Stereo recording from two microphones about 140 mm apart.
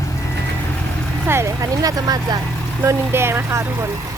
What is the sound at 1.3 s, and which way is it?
Speech, 20° right (ahead or behind).